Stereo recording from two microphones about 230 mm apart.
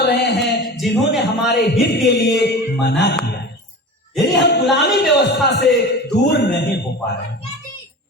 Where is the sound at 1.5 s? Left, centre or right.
Left.